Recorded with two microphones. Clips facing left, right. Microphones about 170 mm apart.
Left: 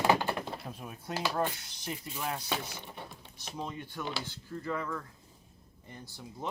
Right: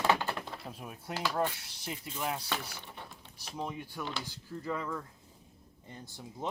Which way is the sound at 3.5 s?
5° right (ahead or behind).